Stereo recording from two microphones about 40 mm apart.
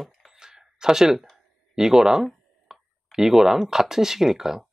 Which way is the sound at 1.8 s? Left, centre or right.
Centre.